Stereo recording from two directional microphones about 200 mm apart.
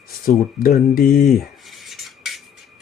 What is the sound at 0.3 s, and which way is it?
Speech, 45° left (ahead or behind).